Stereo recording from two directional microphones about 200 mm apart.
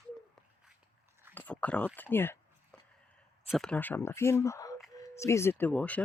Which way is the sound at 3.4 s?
Centre (ahead or behind).